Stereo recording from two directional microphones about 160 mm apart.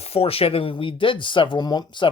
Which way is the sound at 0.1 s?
35° left (ahead or behind).